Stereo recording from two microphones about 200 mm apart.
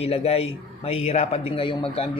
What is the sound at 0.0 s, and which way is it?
Speech, 30° left (ahead or behind).